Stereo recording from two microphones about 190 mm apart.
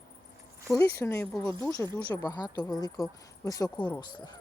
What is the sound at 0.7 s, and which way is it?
Speech, 15° left (ahead or behind).